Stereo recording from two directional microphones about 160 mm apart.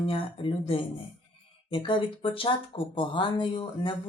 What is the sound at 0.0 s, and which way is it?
Speech, 35° left (ahead or behind).